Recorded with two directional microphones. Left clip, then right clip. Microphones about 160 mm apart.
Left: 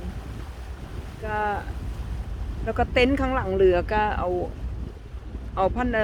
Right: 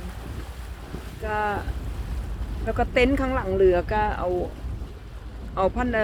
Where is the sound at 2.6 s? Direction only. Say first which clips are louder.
Even; 10° left (ahead or behind).